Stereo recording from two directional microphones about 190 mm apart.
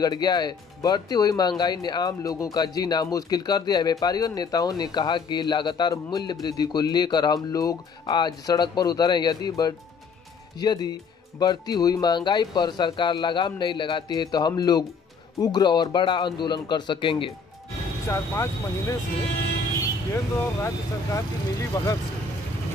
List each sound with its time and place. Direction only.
0.0 s speech: 20° left (ahead or behind)
18.0 s speech: 15° left (ahead or behind)
20.6 s speech: 15° left (ahead or behind)